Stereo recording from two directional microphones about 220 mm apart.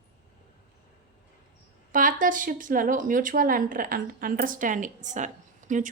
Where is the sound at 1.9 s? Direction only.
35° right (ahead or behind).